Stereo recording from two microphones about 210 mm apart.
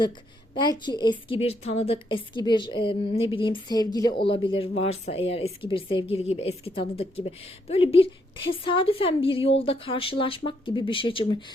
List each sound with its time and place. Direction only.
0.5 s speech: 20° left (ahead or behind)